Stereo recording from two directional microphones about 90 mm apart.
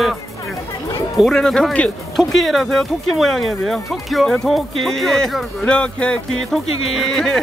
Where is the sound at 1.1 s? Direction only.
5° right (ahead or behind).